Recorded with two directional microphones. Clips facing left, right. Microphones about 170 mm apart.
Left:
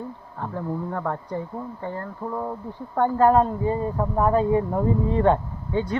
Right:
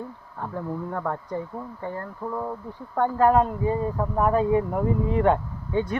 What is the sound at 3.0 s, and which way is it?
Speech, 30° left (ahead or behind).